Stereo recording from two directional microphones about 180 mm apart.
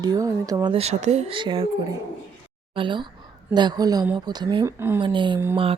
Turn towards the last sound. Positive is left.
turn(degrees=-30)  # may be behind; listen again after turning